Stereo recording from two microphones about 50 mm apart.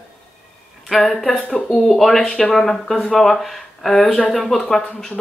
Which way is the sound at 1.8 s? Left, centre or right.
Centre.